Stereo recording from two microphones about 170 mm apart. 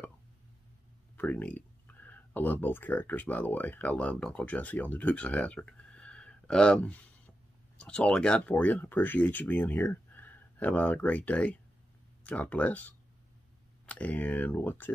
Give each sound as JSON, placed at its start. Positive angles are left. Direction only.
{"t": 1.1, "sound": "speech", "side_deg": 10}